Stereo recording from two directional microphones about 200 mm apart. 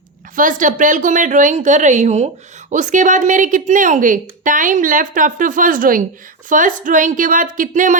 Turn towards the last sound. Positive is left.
turn(degrees=-40)  # may be behind; listen again after turning